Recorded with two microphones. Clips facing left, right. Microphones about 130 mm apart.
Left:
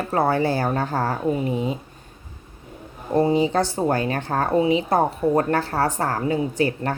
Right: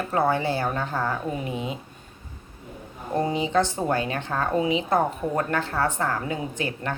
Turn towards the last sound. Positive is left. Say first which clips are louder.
# left 7 dB
turn(degrees=40)  # may be behind; listen again after turning